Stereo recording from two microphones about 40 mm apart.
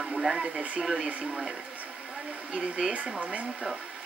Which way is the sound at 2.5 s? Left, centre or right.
Centre.